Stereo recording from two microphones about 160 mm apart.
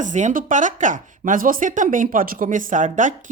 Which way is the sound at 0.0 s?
50° right (ahead or behind).